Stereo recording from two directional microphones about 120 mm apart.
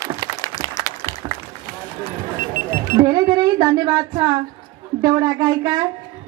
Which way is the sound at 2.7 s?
30° right (ahead or behind).